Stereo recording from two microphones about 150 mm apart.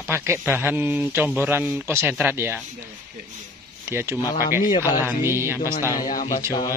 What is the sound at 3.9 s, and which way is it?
Speech, 15° right (ahead or behind).